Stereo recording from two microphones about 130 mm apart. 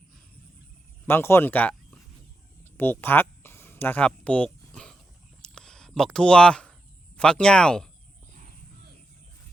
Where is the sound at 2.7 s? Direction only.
15° left (ahead or behind).